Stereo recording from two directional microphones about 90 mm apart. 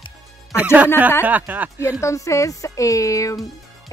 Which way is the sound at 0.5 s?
15° right (ahead or behind).